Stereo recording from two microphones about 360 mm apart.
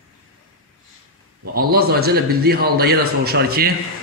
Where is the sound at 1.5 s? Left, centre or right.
Right.